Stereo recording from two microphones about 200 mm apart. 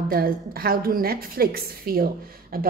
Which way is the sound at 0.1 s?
50° right (ahead or behind).